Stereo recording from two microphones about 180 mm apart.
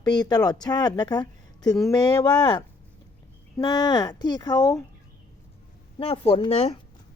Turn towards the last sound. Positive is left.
turn(degrees=35)  # may be behind; listen again after turning